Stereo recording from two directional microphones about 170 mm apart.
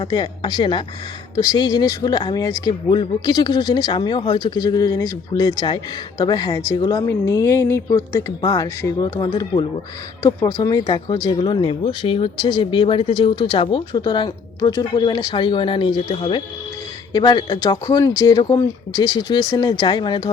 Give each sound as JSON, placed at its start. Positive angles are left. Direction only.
{"t": 0.0, "sound": "speech", "side_deg": 25}